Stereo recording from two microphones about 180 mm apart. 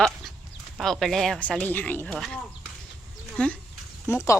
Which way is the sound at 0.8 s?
Centre (ahead or behind).